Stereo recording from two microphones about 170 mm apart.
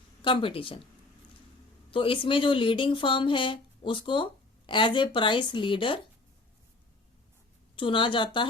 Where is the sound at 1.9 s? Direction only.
30° left (ahead or behind).